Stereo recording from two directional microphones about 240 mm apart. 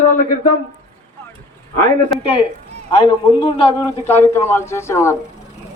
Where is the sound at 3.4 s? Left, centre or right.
Left.